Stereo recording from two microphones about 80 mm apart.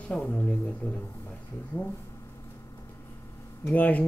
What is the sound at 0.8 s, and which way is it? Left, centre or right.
Speech, left.